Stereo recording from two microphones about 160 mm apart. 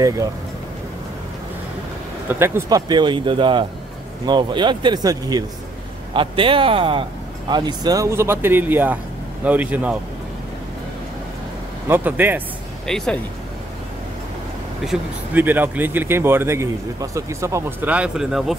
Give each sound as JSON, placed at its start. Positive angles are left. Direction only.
{"t": 0.0, "sound": "speech", "side_deg": -20}
{"t": 2.2, "sound": "speech", "side_deg": -15}
{"t": 2.9, "sound": "speech", "side_deg": -30}
{"t": 11.9, "sound": "speech", "side_deg": -10}
{"t": 12.8, "sound": "speech", "side_deg": 5}
{"t": 14.9, "sound": "speech", "side_deg": -10}